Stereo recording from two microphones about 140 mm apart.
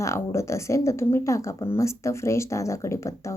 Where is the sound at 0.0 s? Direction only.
20° left (ahead or behind).